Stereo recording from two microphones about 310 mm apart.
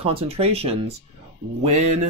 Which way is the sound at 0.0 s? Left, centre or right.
Centre.